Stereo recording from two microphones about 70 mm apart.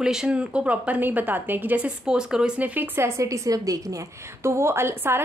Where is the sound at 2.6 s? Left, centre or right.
Right.